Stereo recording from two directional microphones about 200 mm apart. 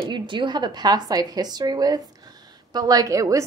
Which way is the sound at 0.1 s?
25° right (ahead or behind).